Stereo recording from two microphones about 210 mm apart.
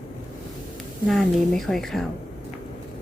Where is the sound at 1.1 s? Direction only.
Centre (ahead or behind).